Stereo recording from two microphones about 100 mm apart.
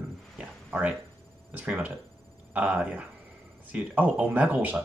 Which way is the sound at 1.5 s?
15° right (ahead or behind).